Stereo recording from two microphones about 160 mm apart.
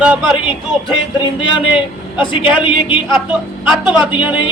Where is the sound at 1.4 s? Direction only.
30° left (ahead or behind).